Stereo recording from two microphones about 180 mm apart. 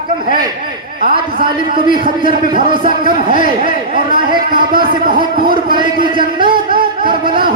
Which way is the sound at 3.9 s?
55° right (ahead or behind).